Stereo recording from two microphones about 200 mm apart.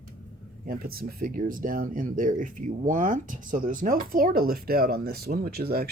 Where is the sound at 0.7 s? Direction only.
50° right (ahead or behind).